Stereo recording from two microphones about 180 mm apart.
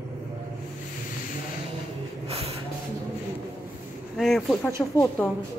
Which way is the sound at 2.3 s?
35° right (ahead or behind).